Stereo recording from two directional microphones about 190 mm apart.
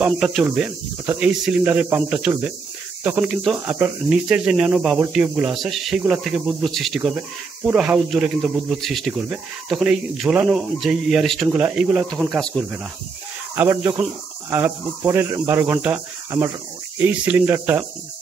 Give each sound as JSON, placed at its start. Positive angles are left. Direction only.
{"t": 0.0, "sound": "speech", "side_deg": -5}
{"t": 13.6, "sound": "speech", "side_deg": -10}